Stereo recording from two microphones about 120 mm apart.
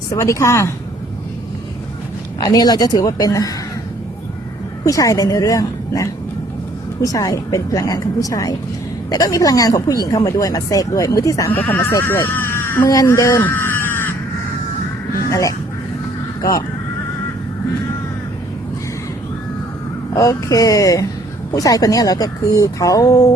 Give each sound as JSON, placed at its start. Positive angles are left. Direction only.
{"t": 0.1, "sound": "speech", "side_deg": 25}
{"t": 2.4, "sound": "speech", "side_deg": 30}
{"t": 4.8, "sound": "speech", "side_deg": 30}
{"t": 11.5, "sound": "speech", "side_deg": 15}
{"t": 15.3, "sound": "speech", "side_deg": 30}
{"t": 20.1, "sound": "speech", "side_deg": 30}